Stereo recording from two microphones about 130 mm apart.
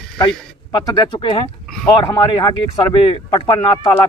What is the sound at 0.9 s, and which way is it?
Speech, 35° left (ahead or behind).